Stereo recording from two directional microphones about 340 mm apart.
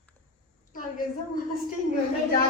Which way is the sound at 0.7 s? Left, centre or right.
Left.